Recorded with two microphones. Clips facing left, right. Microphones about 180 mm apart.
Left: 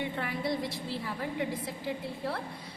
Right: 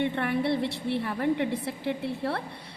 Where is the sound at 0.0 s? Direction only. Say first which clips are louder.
Right 7 dB; 65° right (ahead or behind).